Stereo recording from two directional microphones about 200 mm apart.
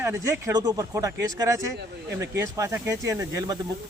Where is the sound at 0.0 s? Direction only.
15° right (ahead or behind).